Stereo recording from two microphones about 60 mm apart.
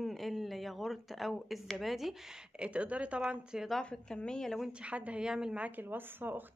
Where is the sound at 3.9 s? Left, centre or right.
Centre.